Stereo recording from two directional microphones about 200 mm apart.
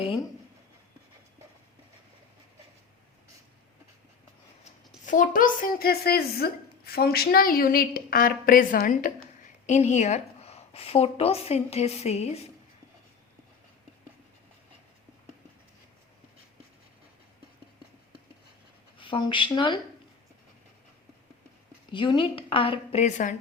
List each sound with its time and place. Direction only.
5.0 s a woman's voice: 40° left (ahead or behind)
18.9 s a woman's voice: 25° left (ahead or behind)
21.9 s a woman's voice: 25° left (ahead or behind)